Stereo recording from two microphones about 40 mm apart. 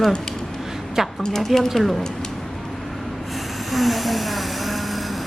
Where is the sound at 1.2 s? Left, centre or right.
Centre.